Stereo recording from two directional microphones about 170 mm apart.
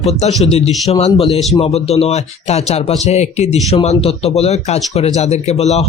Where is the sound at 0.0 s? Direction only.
40° left (ahead or behind).